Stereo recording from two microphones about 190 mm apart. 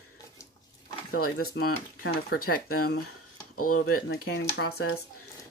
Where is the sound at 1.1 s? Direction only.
50° left (ahead or behind).